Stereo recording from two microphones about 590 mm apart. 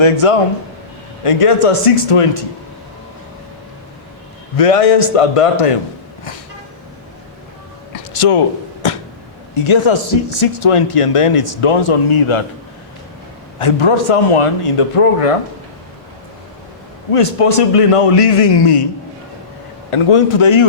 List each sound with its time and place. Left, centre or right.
0.0 s speech: left
4.5 s speech: left
7.9 s a sound: left
9.6 s speech: left
13.6 s speech: left
17.1 s speech: left
19.9 s speech: left